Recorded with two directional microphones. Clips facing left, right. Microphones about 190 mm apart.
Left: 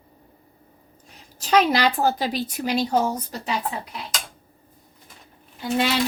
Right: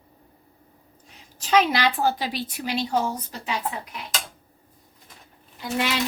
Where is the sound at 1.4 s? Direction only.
40° left (ahead or behind).